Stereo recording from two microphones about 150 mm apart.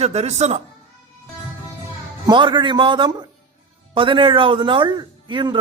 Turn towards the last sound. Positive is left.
turn(degrees=-30)  # may be behind; listen again after turning